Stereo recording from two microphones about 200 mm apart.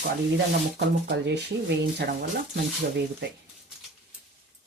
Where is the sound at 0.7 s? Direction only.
55° right (ahead or behind).